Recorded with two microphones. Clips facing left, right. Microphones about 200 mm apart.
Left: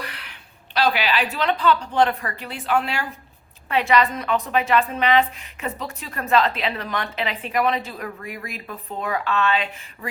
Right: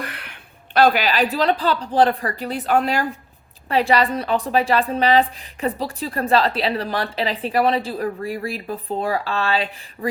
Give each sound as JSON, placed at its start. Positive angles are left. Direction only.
{"t": 0.0, "sound": "a woman's voice", "side_deg": -50}